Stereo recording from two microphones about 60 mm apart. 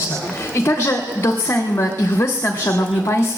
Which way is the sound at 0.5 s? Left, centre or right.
Left.